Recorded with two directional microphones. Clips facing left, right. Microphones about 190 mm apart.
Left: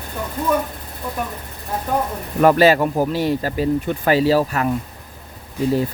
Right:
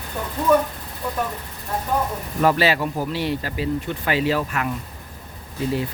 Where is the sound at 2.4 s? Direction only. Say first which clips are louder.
Left 6 dB; 45° left (ahead or behind).